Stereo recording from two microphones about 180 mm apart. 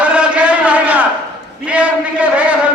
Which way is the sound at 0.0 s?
5° right (ahead or behind).